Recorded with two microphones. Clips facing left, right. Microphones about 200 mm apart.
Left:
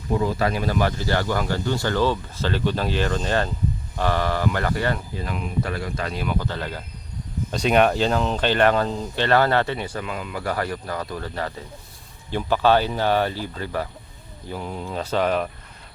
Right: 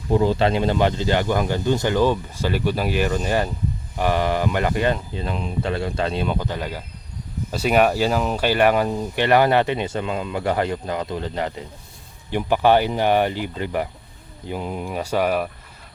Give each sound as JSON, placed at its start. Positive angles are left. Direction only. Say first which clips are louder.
{"t": 0.1, "sound": "speech", "louder": "right 4 dB", "side_deg": -30}